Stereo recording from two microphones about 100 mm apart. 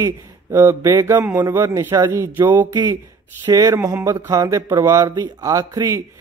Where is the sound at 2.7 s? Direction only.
45° right (ahead or behind).